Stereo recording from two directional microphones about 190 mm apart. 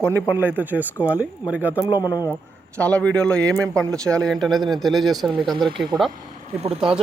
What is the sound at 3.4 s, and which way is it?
Speech, 15° right (ahead or behind).